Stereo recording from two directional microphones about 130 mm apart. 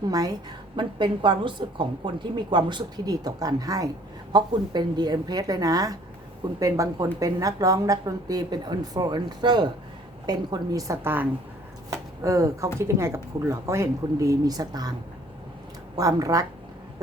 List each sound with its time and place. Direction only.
0.0 s a woman's voice: 30° right (ahead or behind)
16.0 s a woman's voice: 25° right (ahead or behind)